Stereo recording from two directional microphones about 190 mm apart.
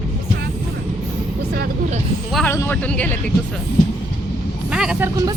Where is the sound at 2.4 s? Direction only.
10° left (ahead or behind).